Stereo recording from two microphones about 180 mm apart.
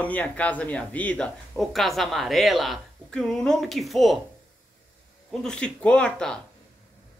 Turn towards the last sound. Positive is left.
turn(degrees=5)  # may be behind; listen again after turning